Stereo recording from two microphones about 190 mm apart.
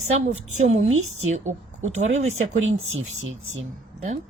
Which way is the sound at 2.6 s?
90° right.